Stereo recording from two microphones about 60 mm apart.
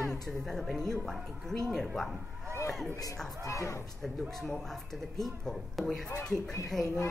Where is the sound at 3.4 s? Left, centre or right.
Left.